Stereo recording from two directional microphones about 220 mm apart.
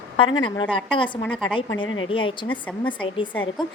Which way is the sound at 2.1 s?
25° left (ahead or behind).